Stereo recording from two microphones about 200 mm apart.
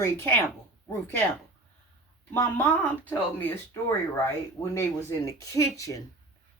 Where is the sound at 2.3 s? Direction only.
10° left (ahead or behind).